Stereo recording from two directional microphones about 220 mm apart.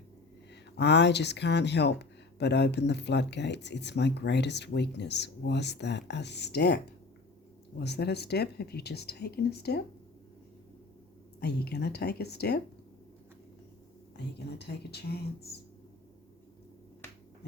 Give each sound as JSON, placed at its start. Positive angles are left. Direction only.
{"t": 0.8, "sound": "speech", "side_deg": 50}
{"t": 11.3, "sound": "speech", "side_deg": 50}
{"t": 14.8, "sound": "speech", "side_deg": 45}